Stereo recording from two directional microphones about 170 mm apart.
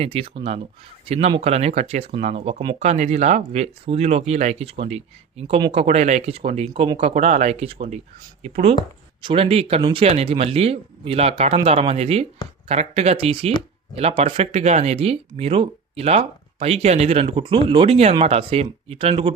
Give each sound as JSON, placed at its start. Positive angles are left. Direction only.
{"t": 0.0, "sound": "speech", "side_deg": -35}